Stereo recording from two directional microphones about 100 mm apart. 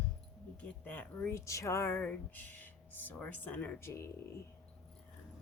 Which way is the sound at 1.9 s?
15° left (ahead or behind).